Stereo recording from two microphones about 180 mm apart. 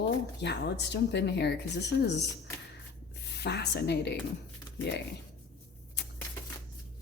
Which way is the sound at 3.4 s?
65° left (ahead or behind).